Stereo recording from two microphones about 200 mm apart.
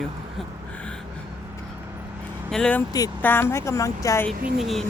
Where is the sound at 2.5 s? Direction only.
5° left (ahead or behind).